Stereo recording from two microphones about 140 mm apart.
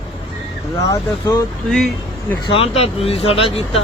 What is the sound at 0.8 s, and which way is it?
Speech, 30° left (ahead or behind).